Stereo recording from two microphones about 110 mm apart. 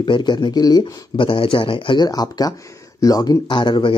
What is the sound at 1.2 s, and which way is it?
Speech, 50° left (ahead or behind).